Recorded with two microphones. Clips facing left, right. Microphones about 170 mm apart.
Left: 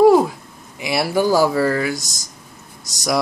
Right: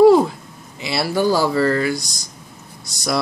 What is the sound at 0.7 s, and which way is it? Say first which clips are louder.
Speech: left 1 dB; 15° left (ahead or behind).